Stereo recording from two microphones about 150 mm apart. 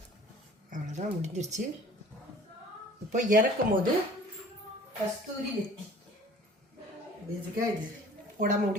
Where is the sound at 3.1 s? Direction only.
65° right (ahead or behind).